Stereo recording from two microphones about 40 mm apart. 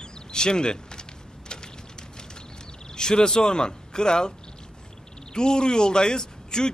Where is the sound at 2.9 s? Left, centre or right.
Centre.